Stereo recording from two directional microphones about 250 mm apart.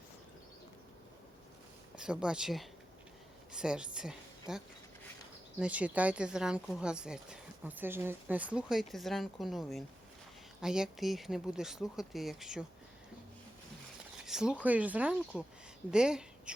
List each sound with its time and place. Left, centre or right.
2.0 s speech: centre
14.3 s speech: centre